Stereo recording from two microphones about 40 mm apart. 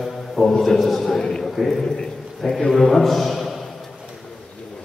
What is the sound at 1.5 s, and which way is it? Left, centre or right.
A man's voice, centre.